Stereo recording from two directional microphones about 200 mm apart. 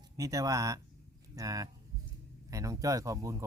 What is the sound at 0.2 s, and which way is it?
Speech, 15° right (ahead or behind).